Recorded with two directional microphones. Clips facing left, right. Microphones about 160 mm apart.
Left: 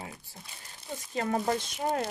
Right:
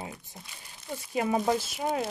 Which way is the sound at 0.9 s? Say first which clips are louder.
Right 3 dB; 10° right (ahead or behind).